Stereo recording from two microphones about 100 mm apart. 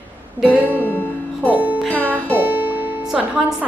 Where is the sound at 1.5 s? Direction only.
20° right (ahead or behind).